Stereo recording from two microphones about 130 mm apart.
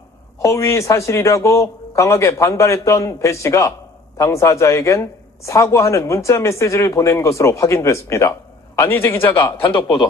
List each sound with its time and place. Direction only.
0.4 s a man's voice: 25° left (ahead or behind)
9.6 s speech: 40° left (ahead or behind)